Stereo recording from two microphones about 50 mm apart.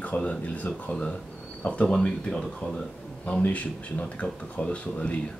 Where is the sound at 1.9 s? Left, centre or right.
Centre.